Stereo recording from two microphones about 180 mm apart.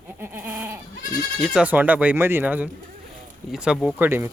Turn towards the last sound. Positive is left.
turn(degrees=-15)  # may be behind; listen again after turning